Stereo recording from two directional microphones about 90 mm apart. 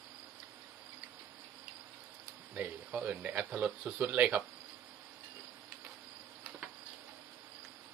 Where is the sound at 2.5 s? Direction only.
15° right (ahead or behind).